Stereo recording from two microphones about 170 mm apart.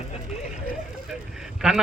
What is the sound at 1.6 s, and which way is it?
Speech, 5° right (ahead or behind).